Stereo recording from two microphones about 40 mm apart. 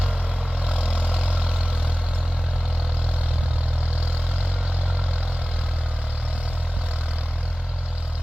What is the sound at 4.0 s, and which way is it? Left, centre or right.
Vehicle, right.